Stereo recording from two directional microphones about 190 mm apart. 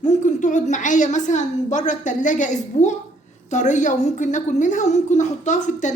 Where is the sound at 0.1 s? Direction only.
40° left (ahead or behind).